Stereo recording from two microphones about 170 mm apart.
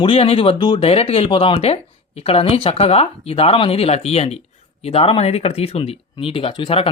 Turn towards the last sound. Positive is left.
turn(degrees=30)  # may be behind; listen again after turning